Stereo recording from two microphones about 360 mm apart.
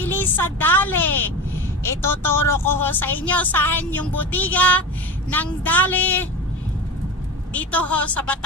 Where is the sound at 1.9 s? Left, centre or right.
Centre.